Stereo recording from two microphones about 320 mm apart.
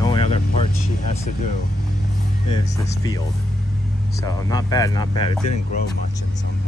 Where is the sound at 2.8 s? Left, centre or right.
Centre.